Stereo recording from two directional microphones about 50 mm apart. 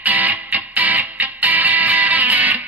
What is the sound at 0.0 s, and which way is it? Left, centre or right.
Music, right.